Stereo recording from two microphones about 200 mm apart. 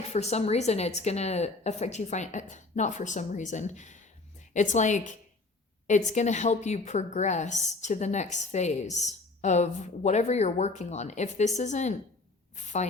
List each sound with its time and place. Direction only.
0.1 s a woman's voice: 35° left (ahead or behind)